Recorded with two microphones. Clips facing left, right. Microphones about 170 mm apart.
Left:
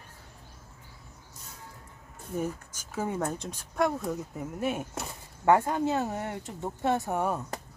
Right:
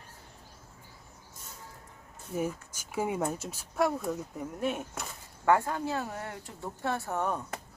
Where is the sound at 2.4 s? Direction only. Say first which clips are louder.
Even; 10° right (ahead or behind); by 4.8 s 5° left (ahead or behind).